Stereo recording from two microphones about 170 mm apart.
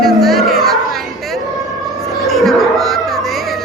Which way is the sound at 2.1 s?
Centre (ahead or behind).